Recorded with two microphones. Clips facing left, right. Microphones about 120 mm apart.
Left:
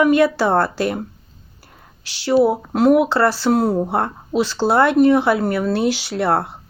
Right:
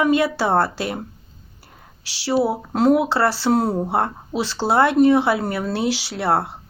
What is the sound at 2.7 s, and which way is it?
Speech, 25° right (ahead or behind).